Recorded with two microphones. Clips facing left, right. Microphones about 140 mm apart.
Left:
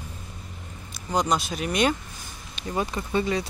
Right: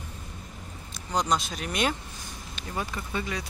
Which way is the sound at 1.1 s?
5° left (ahead or behind).